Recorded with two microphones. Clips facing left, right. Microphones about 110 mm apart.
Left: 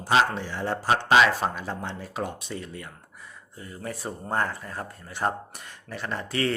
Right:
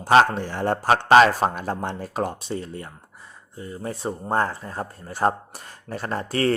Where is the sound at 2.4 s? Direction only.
35° right (ahead or behind).